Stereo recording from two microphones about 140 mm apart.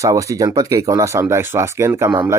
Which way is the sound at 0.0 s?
25° right (ahead or behind).